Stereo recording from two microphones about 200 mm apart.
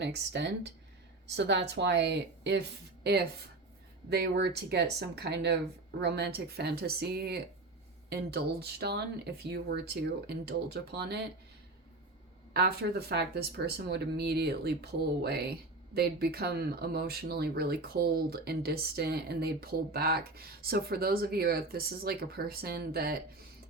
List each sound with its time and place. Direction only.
0.0 s speech: 60° right (ahead or behind)
12.5 s speech: 55° right (ahead or behind)